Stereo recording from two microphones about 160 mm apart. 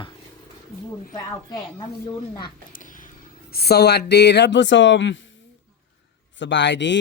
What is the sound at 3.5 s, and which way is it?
Speech, 80° left.